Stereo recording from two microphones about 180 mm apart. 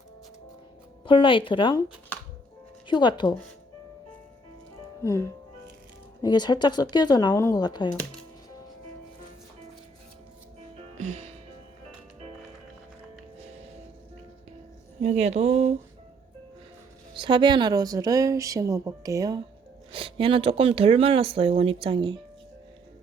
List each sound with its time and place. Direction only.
1.0 s speech: 30° left (ahead or behind)
2.8 s speech: 25° left (ahead or behind)
5.0 s speech: 15° left (ahead or behind)
10.9 s music: 40° right (ahead or behind)
15.0 s speech: 35° right (ahead or behind)
17.2 s a woman's voice: 25° right (ahead or behind)
19.9 s speech: 30° right (ahead or behind)